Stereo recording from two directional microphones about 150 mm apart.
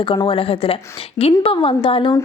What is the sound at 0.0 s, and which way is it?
Speech, 35° left (ahead or behind).